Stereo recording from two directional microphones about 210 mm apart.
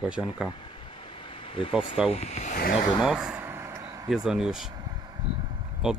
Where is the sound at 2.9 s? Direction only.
5° right (ahead or behind).